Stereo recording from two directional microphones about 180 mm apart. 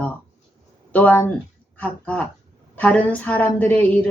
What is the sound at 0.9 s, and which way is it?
Speech, 10° left (ahead or behind).